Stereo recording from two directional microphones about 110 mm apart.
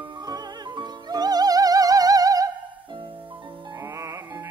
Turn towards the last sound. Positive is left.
turn(degrees=-30)  # may be behind; listen again after turning